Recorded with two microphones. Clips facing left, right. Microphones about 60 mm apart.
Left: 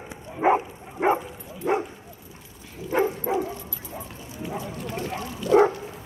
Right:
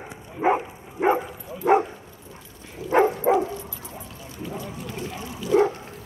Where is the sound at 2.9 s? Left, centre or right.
Right.